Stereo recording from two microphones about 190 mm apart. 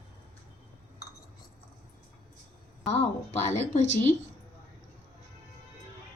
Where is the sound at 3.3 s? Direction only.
35° left (ahead or behind).